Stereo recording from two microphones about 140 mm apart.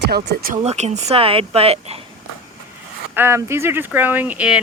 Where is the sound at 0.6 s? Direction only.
55° right (ahead or behind).